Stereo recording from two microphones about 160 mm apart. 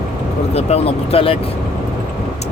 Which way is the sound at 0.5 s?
40° left (ahead or behind).